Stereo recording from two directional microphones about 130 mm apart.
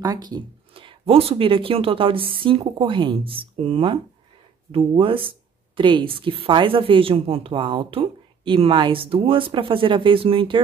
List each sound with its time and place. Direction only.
0.0 s speech: 30° right (ahead or behind)
0.7 s speech: 45° right (ahead or behind)